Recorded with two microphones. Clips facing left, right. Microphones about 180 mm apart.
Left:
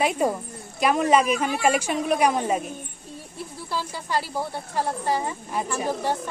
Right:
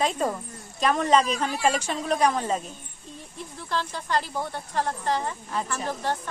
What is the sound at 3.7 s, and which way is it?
Speech, 10° left (ahead or behind).